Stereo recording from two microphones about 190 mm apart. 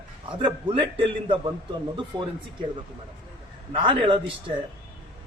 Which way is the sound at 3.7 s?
25° right (ahead or behind).